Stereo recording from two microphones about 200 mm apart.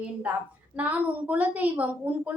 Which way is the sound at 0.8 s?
10° right (ahead or behind).